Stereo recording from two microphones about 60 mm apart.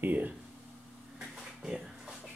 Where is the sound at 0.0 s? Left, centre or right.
Right.